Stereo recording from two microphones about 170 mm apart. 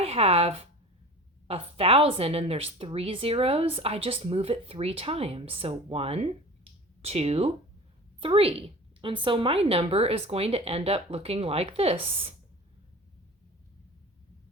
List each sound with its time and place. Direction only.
0.0 s a woman's voice: 35° right (ahead or behind)